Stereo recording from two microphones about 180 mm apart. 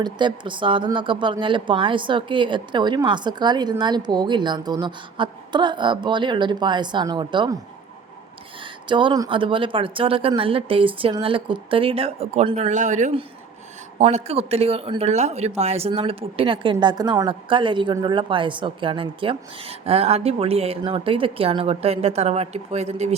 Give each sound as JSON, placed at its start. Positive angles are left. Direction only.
{"t": 0.0, "sound": "speech", "side_deg": -25}
{"t": 8.6, "sound": "speech", "side_deg": -25}